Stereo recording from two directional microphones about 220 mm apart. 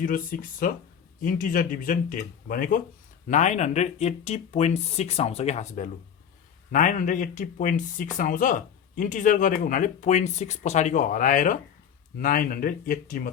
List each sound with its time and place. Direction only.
0.0 s speech: 40° left (ahead or behind)